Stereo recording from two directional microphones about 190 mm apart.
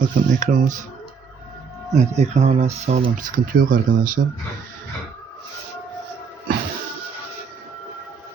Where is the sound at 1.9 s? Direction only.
35° right (ahead or behind); by 4.3 s 55° right (ahead or behind).